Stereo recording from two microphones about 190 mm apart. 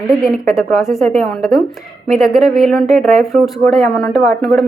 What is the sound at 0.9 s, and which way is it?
A woman's voice, centre (ahead or behind).